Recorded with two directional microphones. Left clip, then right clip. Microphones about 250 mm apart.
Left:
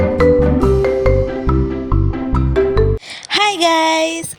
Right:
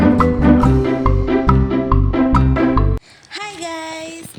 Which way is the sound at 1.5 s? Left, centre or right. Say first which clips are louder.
Right 3 dB; centre.